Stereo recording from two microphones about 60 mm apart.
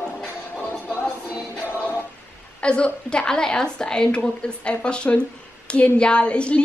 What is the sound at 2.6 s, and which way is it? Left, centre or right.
A woman's voice, centre.